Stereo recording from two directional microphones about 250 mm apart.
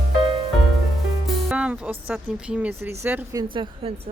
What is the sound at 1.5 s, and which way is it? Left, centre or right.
Speech, centre.